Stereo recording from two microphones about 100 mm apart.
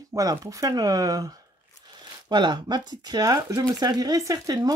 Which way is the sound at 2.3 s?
50° right (ahead or behind).